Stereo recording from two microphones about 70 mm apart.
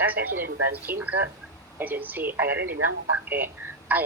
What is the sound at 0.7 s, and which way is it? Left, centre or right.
Speech, right.